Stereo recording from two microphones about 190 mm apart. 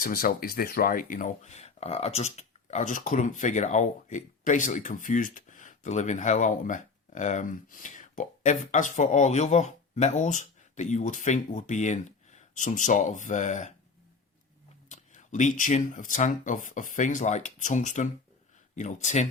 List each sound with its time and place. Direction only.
0.0 s speech: 50° left (ahead or behind)
14.8 s speech: 40° left (ahead or behind)